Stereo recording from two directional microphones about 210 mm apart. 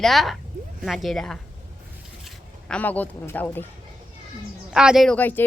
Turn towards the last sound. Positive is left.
turn(degrees=10)  # may be behind; listen again after turning